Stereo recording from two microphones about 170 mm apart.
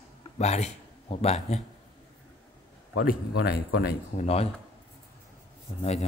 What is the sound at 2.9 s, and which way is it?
A man's voice, 70° left (ahead or behind).